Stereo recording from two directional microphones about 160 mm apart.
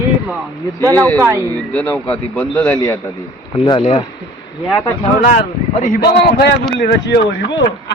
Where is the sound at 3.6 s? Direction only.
35° left (ahead or behind).